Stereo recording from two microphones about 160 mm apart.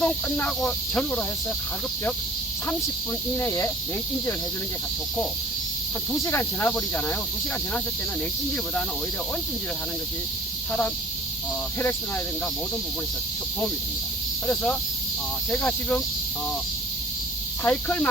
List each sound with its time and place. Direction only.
0.0 s speech: 10° left (ahead or behind)
3.3 s speech: 15° left (ahead or behind)
6.2 s speech: 15° left (ahead or behind)
10.7 s speech: 15° left (ahead or behind)
14.4 s speech: 5° left (ahead or behind)
17.6 s speech: 10° left (ahead or behind)